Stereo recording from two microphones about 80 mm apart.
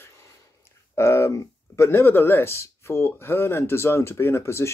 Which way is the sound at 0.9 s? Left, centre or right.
Left.